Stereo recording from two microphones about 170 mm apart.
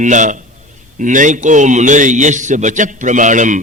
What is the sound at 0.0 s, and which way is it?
A man's voice, 45° right (ahead or behind).